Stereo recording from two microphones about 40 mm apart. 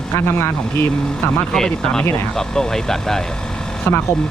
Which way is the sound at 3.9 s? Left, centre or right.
Left.